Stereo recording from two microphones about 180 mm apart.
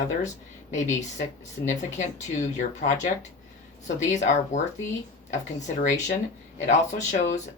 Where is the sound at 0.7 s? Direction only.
40° left (ahead or behind).